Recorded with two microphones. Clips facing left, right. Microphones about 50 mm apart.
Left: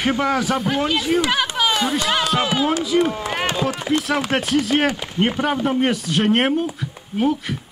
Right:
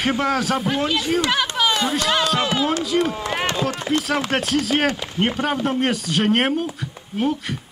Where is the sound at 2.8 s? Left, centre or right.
Centre.